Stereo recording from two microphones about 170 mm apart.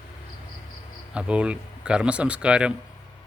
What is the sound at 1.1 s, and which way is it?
Speech, 5° right (ahead or behind).